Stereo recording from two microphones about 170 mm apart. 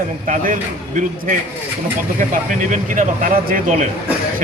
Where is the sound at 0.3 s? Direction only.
50° right (ahead or behind).